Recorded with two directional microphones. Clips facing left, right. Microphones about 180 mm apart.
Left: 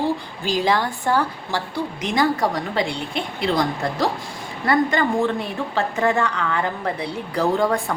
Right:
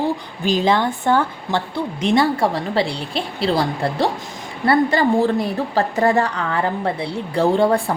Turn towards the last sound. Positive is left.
turn(degrees=-30)  # may be behind; listen again after turning